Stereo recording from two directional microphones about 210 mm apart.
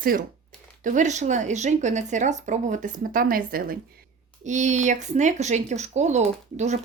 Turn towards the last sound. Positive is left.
turn(degrees=-35)  # may be behind; listen again after turning